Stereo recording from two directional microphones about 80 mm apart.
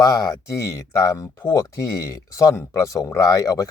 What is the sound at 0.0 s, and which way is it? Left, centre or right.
Speech, left.